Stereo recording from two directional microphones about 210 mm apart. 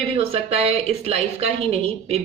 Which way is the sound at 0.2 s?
30° right (ahead or behind).